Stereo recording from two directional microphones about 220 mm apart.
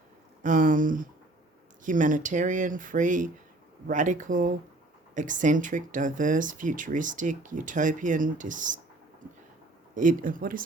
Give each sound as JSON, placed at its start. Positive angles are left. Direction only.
{"t": 0.4, "sound": "speech", "side_deg": -35}
{"t": 9.9, "sound": "speech", "side_deg": -35}